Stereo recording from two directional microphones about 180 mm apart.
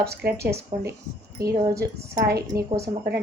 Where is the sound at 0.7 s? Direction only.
45° right (ahead or behind).